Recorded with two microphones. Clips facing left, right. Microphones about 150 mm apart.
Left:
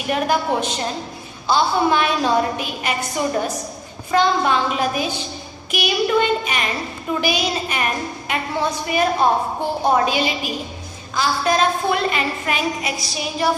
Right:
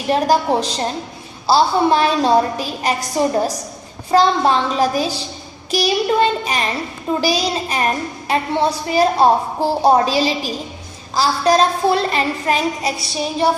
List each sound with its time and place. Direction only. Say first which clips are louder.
0.1 s a woman's voice: right 4 dB; 35° right (ahead or behind)